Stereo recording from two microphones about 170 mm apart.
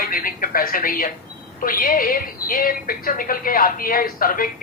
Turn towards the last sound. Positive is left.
turn(degrees=55)  # may be behind; listen again after turning